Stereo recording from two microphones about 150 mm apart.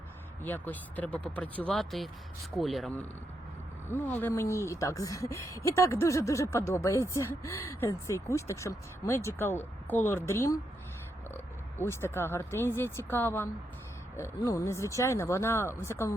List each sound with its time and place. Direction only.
0.4 s speech: 10° left (ahead or behind)
3.8 s speech: 15° left (ahead or behind)
11.8 s speech: 15° left (ahead or behind)